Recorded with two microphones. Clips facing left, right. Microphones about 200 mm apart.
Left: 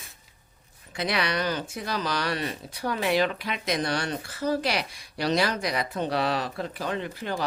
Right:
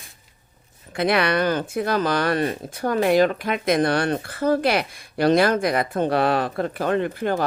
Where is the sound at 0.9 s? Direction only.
55° right (ahead or behind).